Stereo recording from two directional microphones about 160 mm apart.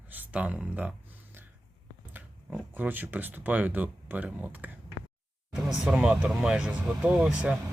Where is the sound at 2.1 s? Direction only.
10° right (ahead or behind).